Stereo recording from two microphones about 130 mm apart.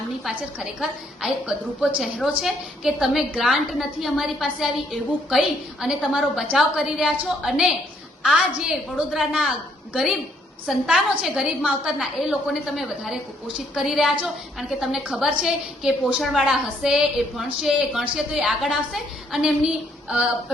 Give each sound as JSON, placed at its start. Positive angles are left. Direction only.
{"t": 0.3, "sound": "a woman's voice", "side_deg": -5}